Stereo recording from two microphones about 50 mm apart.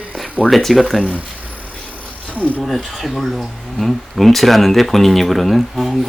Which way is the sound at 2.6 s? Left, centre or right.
Centre.